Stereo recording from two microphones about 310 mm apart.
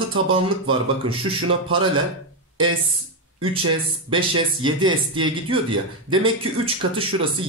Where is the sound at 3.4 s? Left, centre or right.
Centre.